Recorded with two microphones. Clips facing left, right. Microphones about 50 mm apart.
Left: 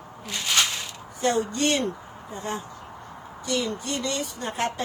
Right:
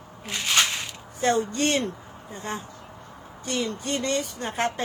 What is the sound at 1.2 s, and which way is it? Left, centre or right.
Speech, right.